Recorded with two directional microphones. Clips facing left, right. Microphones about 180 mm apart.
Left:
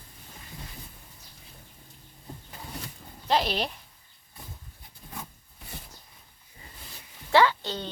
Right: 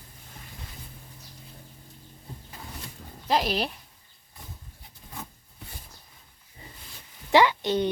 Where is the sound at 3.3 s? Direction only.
5° right (ahead or behind).